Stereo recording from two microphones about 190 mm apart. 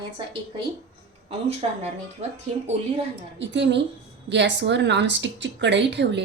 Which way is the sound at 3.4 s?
70° right (ahead or behind).